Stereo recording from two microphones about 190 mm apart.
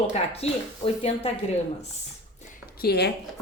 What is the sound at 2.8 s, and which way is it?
Speech, 60° left (ahead or behind).